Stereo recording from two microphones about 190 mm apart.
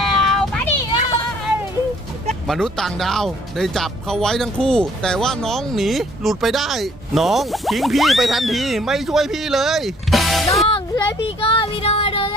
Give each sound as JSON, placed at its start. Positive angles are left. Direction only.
{"t": 0.2, "sound": "cat", "side_deg": 0}
{"t": 0.9, "sound": "a sound", "side_deg": 35}
{"t": 2.5, "sound": "speech", "side_deg": 0}
{"t": 10.7, "sound": "speech", "side_deg": 25}